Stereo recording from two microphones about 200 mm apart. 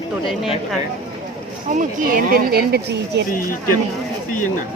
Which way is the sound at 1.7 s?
45° right (ahead or behind).